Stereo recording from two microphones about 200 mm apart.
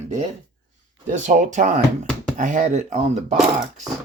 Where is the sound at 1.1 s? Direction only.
35° right (ahead or behind).